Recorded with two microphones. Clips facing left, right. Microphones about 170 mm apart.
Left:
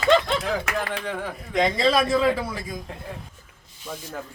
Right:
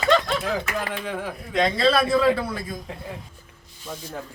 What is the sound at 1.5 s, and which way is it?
Speech, 15° left (ahead or behind).